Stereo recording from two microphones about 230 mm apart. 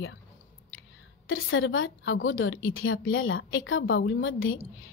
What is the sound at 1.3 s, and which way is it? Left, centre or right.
A woman's voice, left.